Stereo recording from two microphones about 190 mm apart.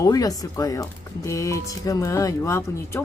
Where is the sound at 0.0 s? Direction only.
20° left (ahead or behind).